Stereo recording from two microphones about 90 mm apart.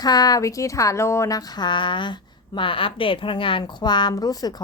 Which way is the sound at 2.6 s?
75° left (ahead or behind).